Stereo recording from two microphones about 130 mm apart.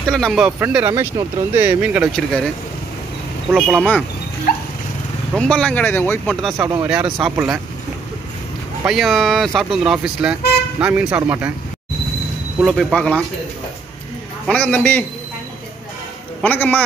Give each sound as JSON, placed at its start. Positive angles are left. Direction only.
{"t": 0.0, "sound": "speech", "side_deg": 5}
{"t": 0.6, "sound": "speech", "side_deg": -15}
{"t": 2.1, "sound": "speech", "side_deg": 5}
{"t": 5.3, "sound": "speech", "side_deg": 5}
{"t": 6.6, "sound": "speech", "side_deg": -30}
{"t": 7.2, "sound": "speech", "side_deg": -5}
{"t": 8.8, "sound": "speech", "side_deg": 0}
{"t": 12.5, "sound": "speech", "side_deg": -5}
{"t": 12.9, "sound": "speech", "side_deg": 5}
{"t": 14.5, "sound": "speech", "side_deg": 10}
{"t": 16.4, "sound": "speech", "side_deg": 15}